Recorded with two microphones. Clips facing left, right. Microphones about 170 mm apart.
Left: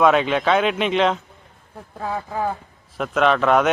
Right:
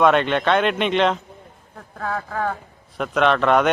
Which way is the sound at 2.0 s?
15° left (ahead or behind).